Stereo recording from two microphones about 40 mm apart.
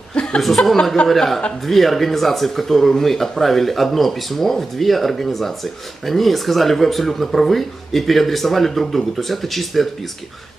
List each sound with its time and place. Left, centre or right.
0.1 s chuckle: left
0.4 s speech: centre